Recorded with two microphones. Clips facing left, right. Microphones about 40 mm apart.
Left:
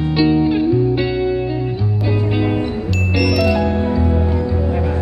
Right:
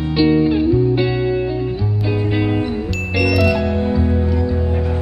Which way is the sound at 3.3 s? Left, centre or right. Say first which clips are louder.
Even; centre.